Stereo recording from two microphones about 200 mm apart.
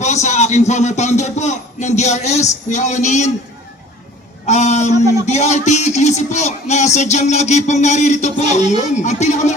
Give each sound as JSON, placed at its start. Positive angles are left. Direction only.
{"t": 0.0, "sound": "speech", "side_deg": 35}
{"t": 4.4, "sound": "speech", "side_deg": 35}